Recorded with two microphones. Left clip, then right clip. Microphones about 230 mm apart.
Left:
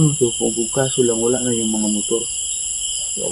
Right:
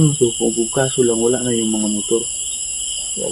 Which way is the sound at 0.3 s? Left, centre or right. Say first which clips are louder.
Right 2 dB; centre.